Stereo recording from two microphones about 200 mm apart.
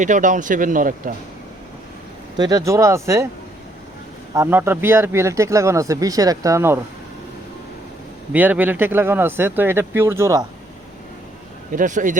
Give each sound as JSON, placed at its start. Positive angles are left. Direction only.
{"t": 0.0, "sound": "speech", "side_deg": -40}
{"t": 2.4, "sound": "speech", "side_deg": -20}
{"t": 4.4, "sound": "speech", "side_deg": -10}
{"t": 8.3, "sound": "speech", "side_deg": -10}
{"t": 11.7, "sound": "speech", "side_deg": -40}